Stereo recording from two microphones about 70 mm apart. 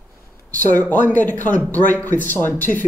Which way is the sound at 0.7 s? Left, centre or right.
Left.